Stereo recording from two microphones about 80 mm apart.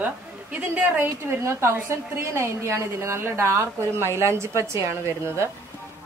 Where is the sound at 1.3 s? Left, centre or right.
Right.